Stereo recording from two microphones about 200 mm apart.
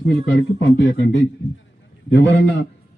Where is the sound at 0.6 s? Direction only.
65° left (ahead or behind).